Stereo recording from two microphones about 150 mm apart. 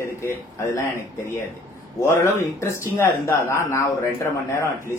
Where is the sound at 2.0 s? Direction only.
20° left (ahead or behind).